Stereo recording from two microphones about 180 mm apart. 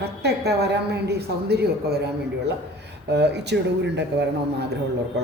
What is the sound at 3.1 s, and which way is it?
Speech, 70° right (ahead or behind).